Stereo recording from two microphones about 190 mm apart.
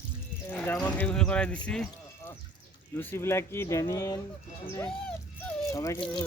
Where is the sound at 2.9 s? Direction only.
10° left (ahead or behind).